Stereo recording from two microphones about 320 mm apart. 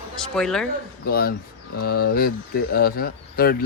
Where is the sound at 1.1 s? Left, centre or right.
Left.